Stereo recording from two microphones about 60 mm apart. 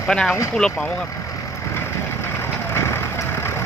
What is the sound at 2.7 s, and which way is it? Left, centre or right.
Vehicle, left.